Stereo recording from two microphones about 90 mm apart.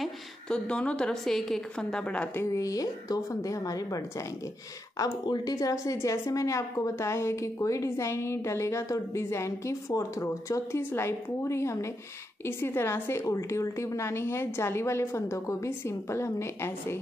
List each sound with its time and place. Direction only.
0.0 s a woman's voice: 10° left (ahead or behind)
2.5 s a woman's voice: 40° left (ahead or behind)